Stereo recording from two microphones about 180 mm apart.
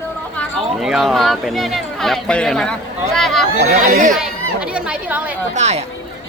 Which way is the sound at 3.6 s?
50° right (ahead or behind).